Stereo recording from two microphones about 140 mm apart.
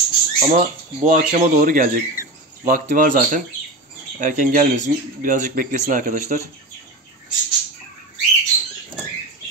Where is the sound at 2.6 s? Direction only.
80° right; by 6.4 s 60° right (ahead or behind).